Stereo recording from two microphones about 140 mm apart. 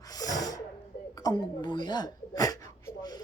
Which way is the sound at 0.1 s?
25° left (ahead or behind).